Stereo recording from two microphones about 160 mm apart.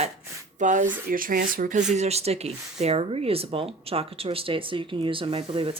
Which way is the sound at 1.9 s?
40° right (ahead or behind).